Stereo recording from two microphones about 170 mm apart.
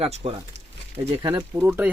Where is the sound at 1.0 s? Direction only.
25° right (ahead or behind).